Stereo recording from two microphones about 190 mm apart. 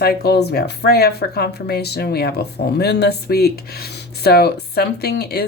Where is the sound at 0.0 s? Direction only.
55° left (ahead or behind).